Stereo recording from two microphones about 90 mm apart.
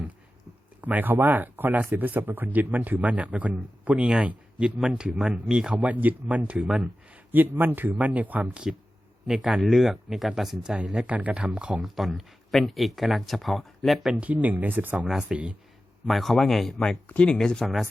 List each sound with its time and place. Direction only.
0.8 s speech: 20° right (ahead or behind)
7.3 s speech: 20° right (ahead or behind)
9.2 s speech: 5° right (ahead or behind)
11.8 s speech: centre (ahead or behind)
14.2 s speech: 15° right (ahead or behind)
15.0 s speech: 5° right (ahead or behind)